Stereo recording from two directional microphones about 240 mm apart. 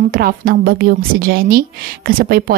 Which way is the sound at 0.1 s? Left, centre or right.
Right.